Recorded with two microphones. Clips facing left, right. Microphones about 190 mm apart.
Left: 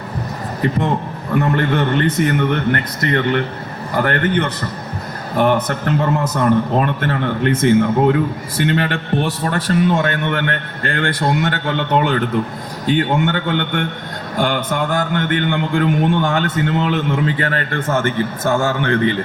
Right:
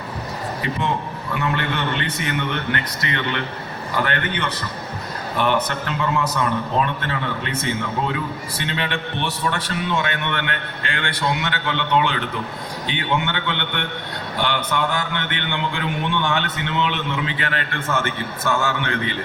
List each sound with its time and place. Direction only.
1.3 s a man's voice: 45° left (ahead or behind)